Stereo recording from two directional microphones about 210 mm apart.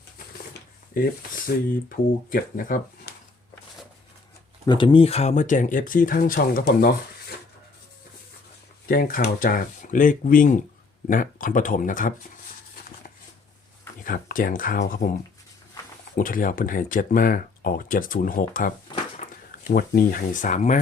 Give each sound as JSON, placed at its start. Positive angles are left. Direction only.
{"t": 0.9, "sound": "speech", "side_deg": 40}
{"t": 2.3, "sound": "speech", "side_deg": 40}
{"t": 4.6, "sound": "speech", "side_deg": 20}
{"t": 8.9, "sound": "speech", "side_deg": 45}
{"t": 14.0, "sound": "speech", "side_deg": 40}
{"t": 16.1, "sound": "speech", "side_deg": 40}
{"t": 18.9, "sound": "a sound", "side_deg": 30}
{"t": 19.5, "sound": "speech", "side_deg": 45}